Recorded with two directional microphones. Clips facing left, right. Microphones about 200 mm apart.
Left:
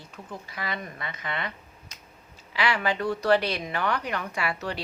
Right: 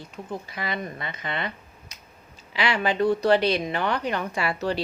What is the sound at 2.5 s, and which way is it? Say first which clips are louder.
Speech: right 3 dB; 25° right (ahead or behind).